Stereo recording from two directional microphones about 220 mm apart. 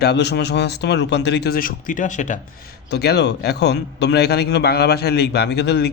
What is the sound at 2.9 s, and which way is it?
A man's voice, 45° left (ahead or behind).